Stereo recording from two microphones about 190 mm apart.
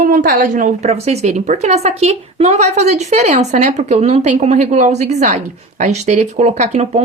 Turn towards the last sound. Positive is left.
turn(degrees=-35)  # may be behind; listen again after turning